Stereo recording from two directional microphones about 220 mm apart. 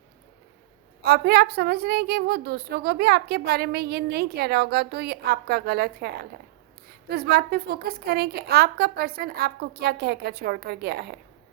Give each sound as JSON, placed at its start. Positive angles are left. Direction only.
{"t": 1.0, "sound": "a woman's voice", "side_deg": -45}